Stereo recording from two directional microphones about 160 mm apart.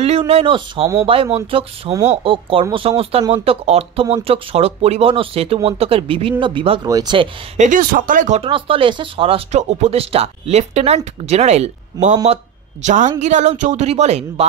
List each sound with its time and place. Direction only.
0.3 s speech: 40° right (ahead or behind)
6.8 s speech: 25° right (ahead or behind)
7.5 s speech: 50° right (ahead or behind)
8.4 s speech: 35° right (ahead or behind)